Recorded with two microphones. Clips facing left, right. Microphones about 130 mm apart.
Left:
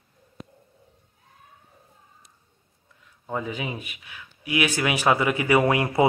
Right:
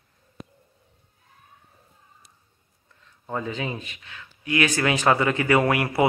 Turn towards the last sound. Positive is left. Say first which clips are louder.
# left 1 dB
turn(degrees=20)  # may be behind; listen again after turning